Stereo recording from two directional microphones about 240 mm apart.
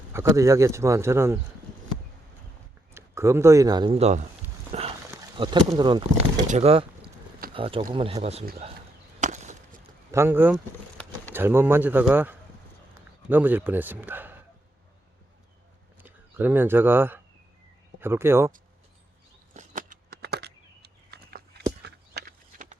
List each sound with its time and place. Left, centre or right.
0.1 s a man's voice: centre
2.9 s speech: centre; by 4.3 s right
4.7 s horse: right
5.1 s speech: centre
9.2 s chop: right
10.1 s a man's voice: centre
16.0 s a man's voice: centre
19.5 s a sound: right